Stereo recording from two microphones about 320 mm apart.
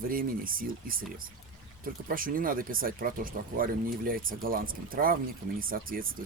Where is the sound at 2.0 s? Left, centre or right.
Right.